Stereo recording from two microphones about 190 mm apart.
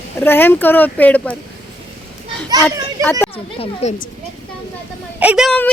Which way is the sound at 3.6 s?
35° left (ahead or behind).